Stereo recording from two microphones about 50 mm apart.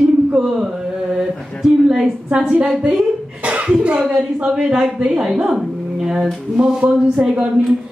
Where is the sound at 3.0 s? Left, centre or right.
Right.